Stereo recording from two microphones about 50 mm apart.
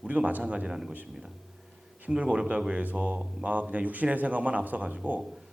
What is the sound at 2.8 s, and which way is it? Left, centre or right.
A man's voice, right.